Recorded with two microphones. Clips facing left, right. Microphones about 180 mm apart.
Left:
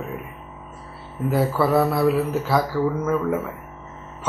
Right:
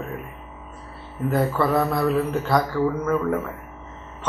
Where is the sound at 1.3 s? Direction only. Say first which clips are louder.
Left 1 dB; 5° left (ahead or behind).